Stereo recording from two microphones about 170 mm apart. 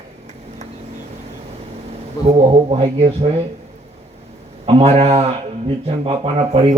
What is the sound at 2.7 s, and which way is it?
Speech, 35° right (ahead or behind).